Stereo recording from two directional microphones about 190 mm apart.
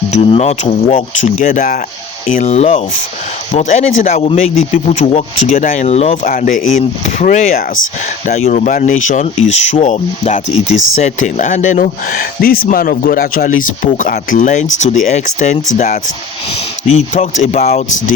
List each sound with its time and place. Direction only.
0.1 s speech: 35° left (ahead or behind)